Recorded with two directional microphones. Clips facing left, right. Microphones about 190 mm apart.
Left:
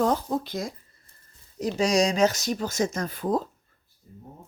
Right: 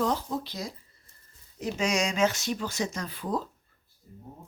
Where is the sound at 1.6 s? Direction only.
35° left (ahead or behind).